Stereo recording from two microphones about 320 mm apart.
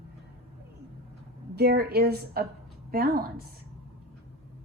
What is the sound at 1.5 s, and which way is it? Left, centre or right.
A woman's voice, right.